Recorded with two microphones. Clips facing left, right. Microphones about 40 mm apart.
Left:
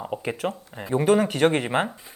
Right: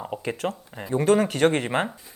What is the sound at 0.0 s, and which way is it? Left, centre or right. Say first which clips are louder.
Speech: left 1 dB; centre.